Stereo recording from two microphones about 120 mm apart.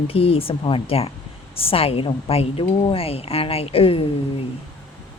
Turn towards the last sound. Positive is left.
turn(degrees=50)  # may be behind; listen again after turning